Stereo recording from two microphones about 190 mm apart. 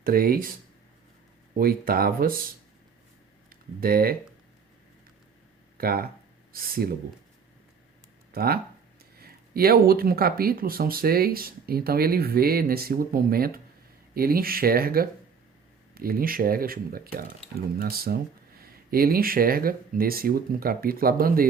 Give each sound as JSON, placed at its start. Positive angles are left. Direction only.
{"t": 0.0, "sound": "speech", "side_deg": -50}
{"t": 1.5, "sound": "speech", "side_deg": -50}
{"t": 3.5, "sound": "speech", "side_deg": -50}
{"t": 5.7, "sound": "speech", "side_deg": -50}
{"t": 8.3, "sound": "speech", "side_deg": -50}